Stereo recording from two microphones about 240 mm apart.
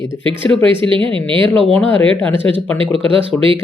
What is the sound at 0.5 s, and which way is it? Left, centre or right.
Speech, right.